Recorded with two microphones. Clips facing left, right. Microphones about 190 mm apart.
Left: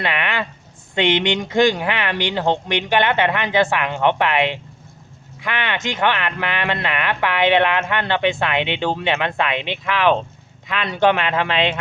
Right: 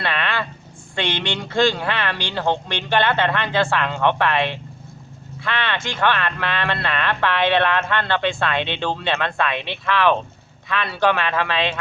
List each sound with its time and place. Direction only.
0.0 s speech: 15° left (ahead or behind)